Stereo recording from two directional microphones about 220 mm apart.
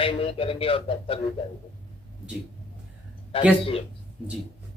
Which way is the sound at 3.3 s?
25° left (ahead or behind).